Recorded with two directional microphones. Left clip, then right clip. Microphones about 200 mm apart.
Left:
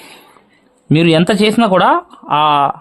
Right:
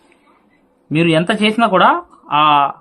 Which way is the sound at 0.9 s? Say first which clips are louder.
Left 3 dB; 50° left (ahead or behind).